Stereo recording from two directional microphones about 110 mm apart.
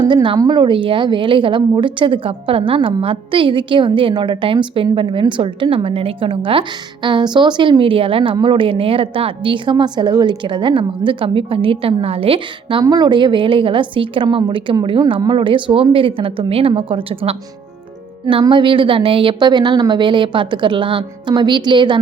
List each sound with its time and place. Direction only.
0.0 s a woman's voice: 45° right (ahead or behind)
12.8 s a woman's voice: 40° right (ahead or behind)